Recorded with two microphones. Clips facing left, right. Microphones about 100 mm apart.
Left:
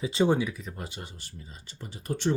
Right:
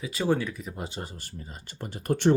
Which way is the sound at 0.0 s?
25° left (ahead or behind).